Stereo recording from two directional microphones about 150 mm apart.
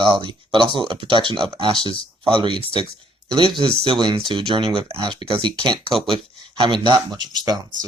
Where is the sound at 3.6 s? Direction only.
35° right (ahead or behind).